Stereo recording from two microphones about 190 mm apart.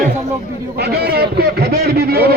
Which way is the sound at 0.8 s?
60° right (ahead or behind).